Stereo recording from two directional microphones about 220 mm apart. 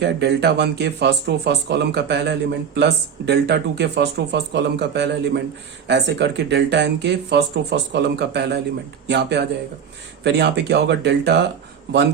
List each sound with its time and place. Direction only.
0.0 s speech: 50° right (ahead or behind)